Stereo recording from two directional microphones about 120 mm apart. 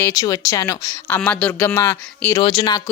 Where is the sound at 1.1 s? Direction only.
10° left (ahead or behind).